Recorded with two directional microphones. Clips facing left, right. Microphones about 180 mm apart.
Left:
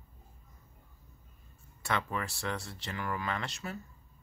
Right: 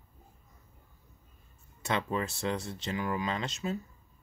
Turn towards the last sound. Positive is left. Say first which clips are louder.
# right 4 dB
turn(degrees=-20)  # may be behind; listen again after turning